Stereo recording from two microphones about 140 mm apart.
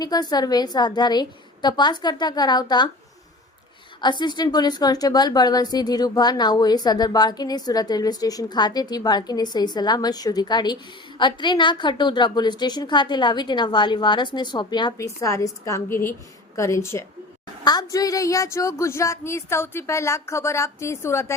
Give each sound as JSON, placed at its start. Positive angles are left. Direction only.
{"t": 0.0, "sound": "a woman's voice", "side_deg": 30}
{"t": 4.0, "sound": "a woman's voice", "side_deg": 30}
{"t": 17.6, "sound": "a woman's voice", "side_deg": 30}